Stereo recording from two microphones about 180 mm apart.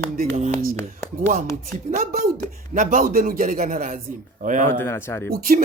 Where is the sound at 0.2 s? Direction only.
45° right (ahead or behind).